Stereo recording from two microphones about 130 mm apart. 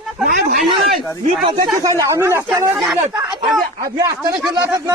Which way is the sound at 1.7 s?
25° right (ahead or behind).